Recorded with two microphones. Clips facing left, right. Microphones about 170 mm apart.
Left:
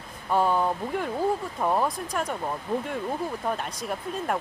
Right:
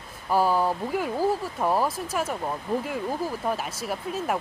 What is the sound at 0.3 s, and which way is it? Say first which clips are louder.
Speech: right 1 dB; 5° right (ahead or behind).